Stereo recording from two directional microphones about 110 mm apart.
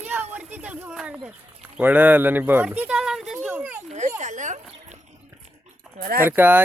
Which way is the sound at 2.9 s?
5° right (ahead or behind).